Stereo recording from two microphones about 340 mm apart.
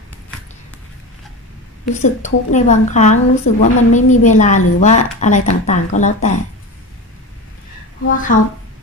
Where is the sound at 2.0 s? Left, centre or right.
Left.